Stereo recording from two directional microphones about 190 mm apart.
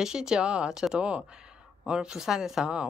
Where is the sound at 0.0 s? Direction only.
5° right (ahead or behind).